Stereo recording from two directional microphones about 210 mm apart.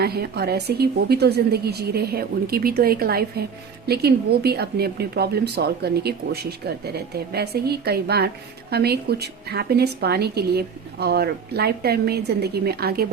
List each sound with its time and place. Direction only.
0.0 s speech: 50° right (ahead or behind)